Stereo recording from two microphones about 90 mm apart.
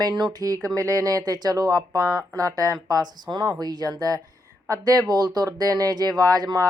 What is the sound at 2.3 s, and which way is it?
A woman's voice, 40° right (ahead or behind).